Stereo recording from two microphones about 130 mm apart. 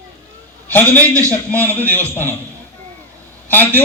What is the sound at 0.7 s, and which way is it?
A man's voice, 15° left (ahead or behind).